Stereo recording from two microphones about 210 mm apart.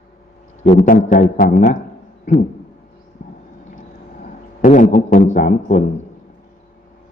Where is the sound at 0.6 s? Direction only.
35° left (ahead or behind).